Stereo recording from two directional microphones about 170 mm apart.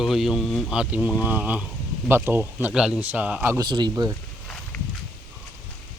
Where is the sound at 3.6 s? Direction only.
25° right (ahead or behind).